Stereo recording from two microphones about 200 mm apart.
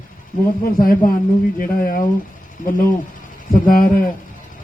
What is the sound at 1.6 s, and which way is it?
Speech, 45° left (ahead or behind).